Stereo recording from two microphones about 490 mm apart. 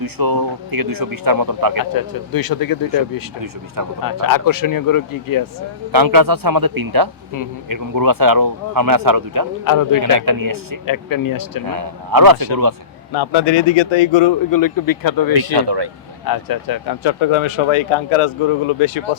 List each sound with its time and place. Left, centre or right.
0.0 s speech: right
1.8 s speech: left
5.9 s speech: right
9.6 s speech: left
10.0 s speech: right
10.8 s speech: left
11.7 s speech: right
13.1 s speech: left
14.5 s speech: left
15.5 s speech: right
16.2 s speech: left